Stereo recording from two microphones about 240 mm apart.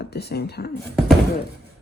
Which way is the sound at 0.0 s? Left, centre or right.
Left.